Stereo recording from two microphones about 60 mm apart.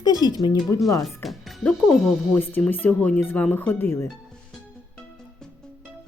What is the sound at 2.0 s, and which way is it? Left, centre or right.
Speech, centre.